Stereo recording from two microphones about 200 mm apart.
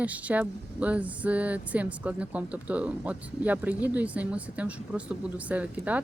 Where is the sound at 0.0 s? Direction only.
5° right (ahead or behind).